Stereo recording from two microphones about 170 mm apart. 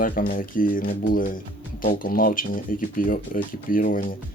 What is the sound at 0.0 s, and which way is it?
Speech, 55° left (ahead or behind).